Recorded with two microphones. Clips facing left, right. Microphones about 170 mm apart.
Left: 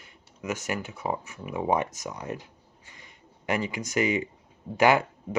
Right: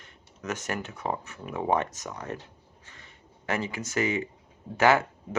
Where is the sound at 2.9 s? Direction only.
15° left (ahead or behind).